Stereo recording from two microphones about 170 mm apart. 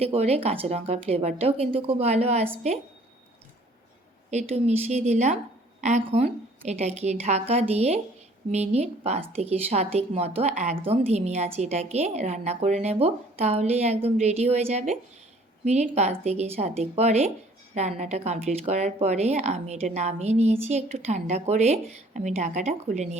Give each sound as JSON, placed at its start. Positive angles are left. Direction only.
{"t": 0.0, "sound": "speech", "side_deg": -35}
{"t": 4.3, "sound": "speech", "side_deg": -40}